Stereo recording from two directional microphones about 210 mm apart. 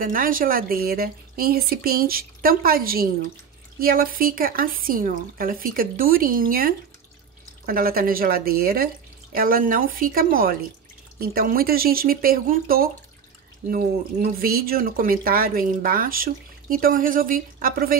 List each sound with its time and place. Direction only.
0.0 s speech: 40° right (ahead or behind)